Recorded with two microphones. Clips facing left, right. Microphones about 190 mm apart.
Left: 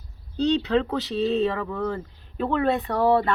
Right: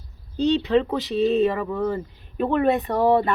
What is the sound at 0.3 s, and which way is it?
Speech, 15° right (ahead or behind).